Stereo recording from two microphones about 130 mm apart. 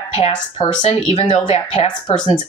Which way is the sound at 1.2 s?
50° left (ahead or behind).